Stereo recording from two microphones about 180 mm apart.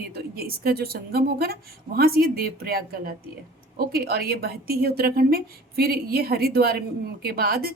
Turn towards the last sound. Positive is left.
turn(degrees=-60)  # may be behind; listen again after turning